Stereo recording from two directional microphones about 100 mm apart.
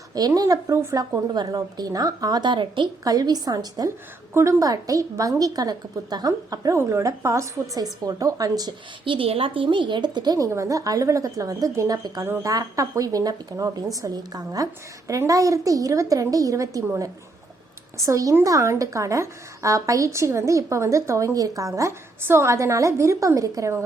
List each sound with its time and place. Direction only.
0.1 s a woman's voice: 40° right (ahead or behind)
1.3 s a woman's voice: 40° right (ahead or behind)
3.0 s a woman's voice: 40° right (ahead or behind)
9.0 s a woman's voice: 65° right (ahead or behind); by 16.8 s 35° right (ahead or behind)
17.9 s a woman's voice: 30° right (ahead or behind)